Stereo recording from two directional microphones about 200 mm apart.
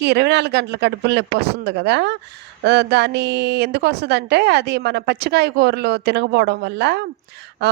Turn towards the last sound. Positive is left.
turn(degrees=-55)  # may be behind; listen again after turning